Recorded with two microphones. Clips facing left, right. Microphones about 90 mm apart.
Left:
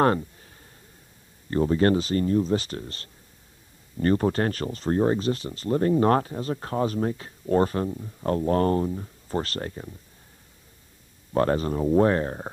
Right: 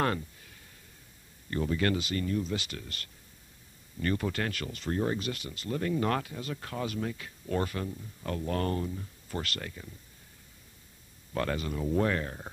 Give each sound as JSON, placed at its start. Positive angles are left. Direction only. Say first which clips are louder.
{"t": 0.0, "sound": "a sound", "louder": "left 9 dB", "side_deg": 35}
{"t": 1.5, "sound": "speech", "louder": "left 8 dB", "side_deg": 35}
{"t": 11.3, "sound": "speech", "louder": "left 9 dB", "side_deg": 35}